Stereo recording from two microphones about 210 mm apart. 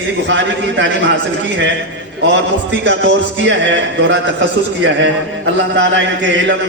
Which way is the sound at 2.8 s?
60° right (ahead or behind).